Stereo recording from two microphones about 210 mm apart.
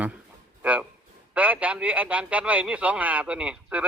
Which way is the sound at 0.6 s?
5° right (ahead or behind).